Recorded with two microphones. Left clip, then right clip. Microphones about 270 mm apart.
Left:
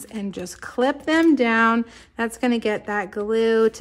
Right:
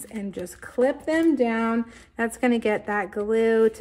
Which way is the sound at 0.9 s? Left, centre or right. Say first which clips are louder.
Left 7 dB; centre.